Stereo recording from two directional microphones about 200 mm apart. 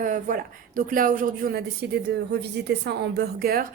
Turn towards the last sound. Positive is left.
turn(degrees=-50)  # may be behind; listen again after turning